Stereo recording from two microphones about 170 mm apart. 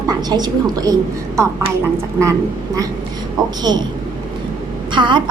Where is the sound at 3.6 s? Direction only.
25° right (ahead or behind).